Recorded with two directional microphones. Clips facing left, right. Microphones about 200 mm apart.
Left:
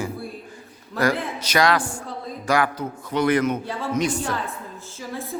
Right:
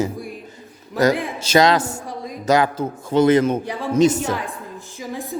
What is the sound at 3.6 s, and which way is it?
A woman's voice, 15° right (ahead or behind).